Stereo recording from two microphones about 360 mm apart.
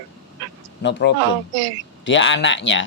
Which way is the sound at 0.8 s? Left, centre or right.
Left.